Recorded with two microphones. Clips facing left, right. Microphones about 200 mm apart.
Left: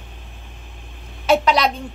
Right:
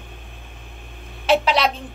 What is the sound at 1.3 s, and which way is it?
Speech, centre (ahead or behind).